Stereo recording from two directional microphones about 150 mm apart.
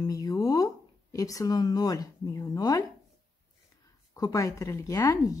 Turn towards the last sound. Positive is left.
turn(degrees=25)  # may be behind; listen again after turning